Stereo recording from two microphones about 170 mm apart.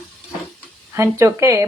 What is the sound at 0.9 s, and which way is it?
Speech, 15° right (ahead or behind).